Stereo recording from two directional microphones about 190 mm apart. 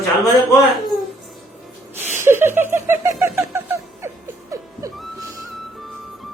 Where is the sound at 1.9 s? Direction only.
10° right (ahead or behind).